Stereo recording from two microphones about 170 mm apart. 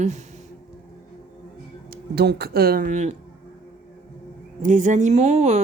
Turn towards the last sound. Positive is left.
turn(degrees=-40)  # may be behind; listen again after turning